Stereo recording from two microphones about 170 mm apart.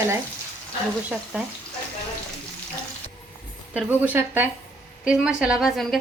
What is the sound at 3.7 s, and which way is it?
A woman's voice, 10° right (ahead or behind).